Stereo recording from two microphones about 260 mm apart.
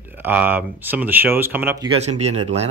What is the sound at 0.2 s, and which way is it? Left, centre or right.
Speech, centre.